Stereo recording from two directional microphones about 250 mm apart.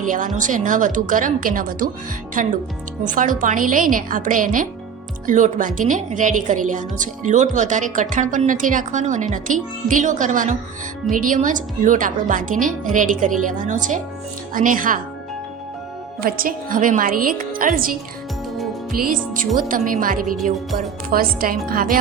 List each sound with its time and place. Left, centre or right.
0.0 s a woman's voice: right
16.2 s a woman's voice: right
20.3 s speech: centre
21.1 s a woman's voice: right